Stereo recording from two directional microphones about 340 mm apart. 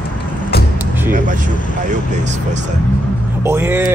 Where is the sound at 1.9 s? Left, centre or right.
Right.